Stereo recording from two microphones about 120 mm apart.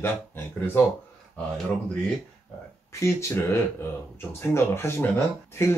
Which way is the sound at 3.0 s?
20° left (ahead or behind).